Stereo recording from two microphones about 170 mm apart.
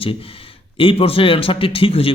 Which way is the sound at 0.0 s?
35° left (ahead or behind).